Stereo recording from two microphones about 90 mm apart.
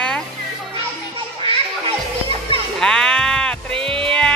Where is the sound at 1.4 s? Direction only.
90° right.